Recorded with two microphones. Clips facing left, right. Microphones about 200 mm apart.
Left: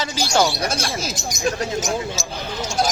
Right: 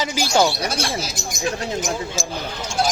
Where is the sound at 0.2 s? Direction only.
15° right (ahead or behind).